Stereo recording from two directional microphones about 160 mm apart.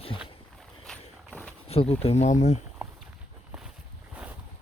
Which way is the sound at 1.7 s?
40° left (ahead or behind).